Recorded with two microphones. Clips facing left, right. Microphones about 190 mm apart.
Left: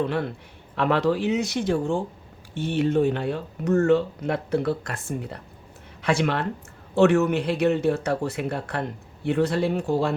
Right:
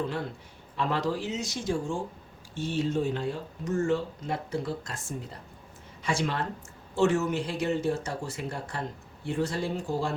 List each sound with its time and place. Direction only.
0.0 s speech: 65° left (ahead or behind)